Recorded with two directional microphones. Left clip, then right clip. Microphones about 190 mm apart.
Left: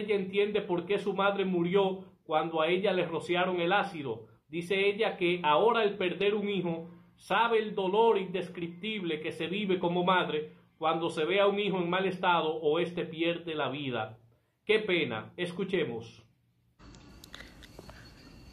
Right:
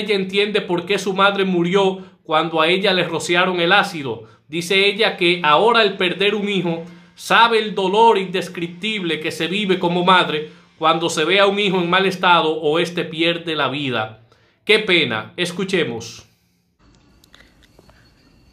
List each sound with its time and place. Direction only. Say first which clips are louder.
0.1 s speech: right 11 dB; 20° right (ahead or behind)